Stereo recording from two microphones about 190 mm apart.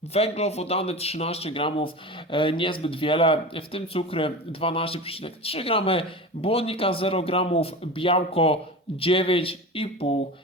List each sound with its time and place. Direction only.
0.1 s speech: 35° left (ahead or behind)